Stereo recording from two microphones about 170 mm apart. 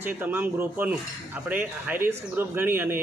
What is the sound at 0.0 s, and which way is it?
Speech, 10° right (ahead or behind).